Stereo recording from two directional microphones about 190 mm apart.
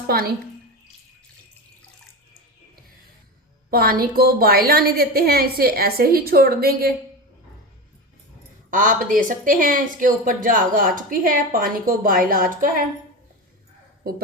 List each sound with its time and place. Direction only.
3.7 s speech: 50° right (ahead or behind)
8.7 s speech: 45° right (ahead or behind)